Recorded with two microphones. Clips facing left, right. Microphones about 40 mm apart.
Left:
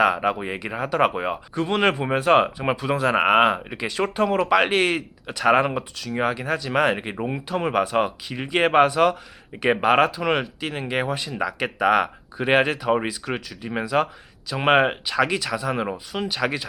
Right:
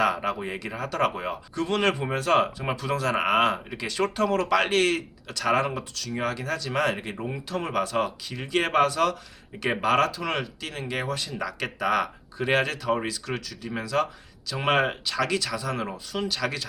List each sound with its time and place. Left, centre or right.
0.0 s speech: centre